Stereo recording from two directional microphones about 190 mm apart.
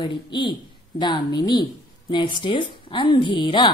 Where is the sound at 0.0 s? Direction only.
25° left (ahead or behind).